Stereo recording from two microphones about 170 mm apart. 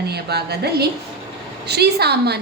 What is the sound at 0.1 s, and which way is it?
A woman's voice, 70° right (ahead or behind).